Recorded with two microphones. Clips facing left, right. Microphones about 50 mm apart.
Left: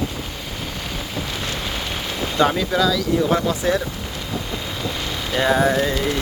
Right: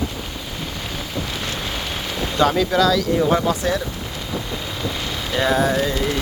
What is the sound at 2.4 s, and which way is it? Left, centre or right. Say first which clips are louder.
Speech: even; left.